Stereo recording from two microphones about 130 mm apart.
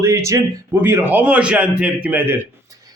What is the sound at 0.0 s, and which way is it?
A man's voice, 25° right (ahead or behind).